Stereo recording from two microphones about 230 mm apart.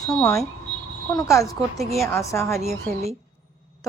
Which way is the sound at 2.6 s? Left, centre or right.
Right.